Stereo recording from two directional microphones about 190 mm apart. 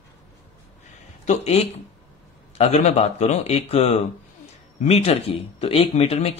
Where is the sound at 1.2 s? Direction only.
35° left (ahead or behind).